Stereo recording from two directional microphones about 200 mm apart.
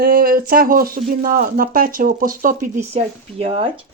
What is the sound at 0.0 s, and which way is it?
Speech, 45° right (ahead or behind).